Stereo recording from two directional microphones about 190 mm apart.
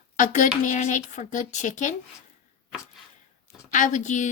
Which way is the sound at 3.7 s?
40° left (ahead or behind).